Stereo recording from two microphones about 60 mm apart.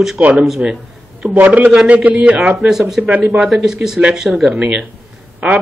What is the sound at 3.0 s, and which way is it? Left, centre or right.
Speech, right.